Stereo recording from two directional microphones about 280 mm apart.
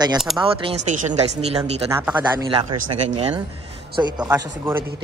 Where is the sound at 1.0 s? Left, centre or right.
Right.